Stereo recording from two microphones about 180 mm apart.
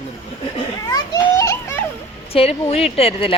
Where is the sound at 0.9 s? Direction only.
20° left (ahead or behind).